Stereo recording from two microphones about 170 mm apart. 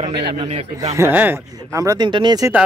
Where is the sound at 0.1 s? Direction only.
80° right.